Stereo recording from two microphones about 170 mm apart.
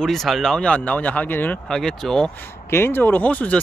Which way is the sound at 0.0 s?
Centre (ahead or behind).